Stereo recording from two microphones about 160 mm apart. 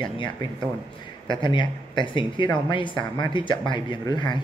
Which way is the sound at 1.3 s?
30° left (ahead or behind).